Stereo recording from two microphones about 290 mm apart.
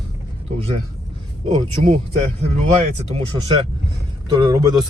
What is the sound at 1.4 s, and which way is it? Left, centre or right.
Speech, right.